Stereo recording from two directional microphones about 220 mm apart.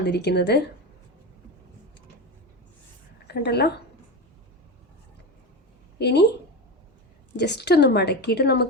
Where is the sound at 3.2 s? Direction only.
45° left (ahead or behind).